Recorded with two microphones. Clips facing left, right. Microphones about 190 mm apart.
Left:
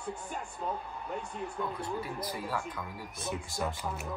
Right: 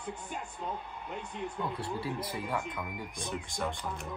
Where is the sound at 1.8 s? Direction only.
30° right (ahead or behind).